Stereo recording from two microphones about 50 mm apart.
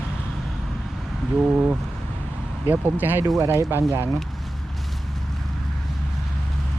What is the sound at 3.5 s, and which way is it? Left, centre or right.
Speech, right.